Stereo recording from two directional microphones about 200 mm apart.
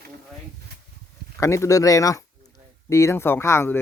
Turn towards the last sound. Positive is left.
turn(degrees=15)  # may be behind; listen again after turning